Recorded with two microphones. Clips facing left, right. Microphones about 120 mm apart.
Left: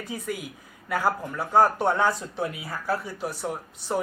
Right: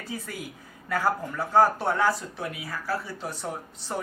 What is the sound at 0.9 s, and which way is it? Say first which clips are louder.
Speech: left 1 dB; 15° left (ahead or behind).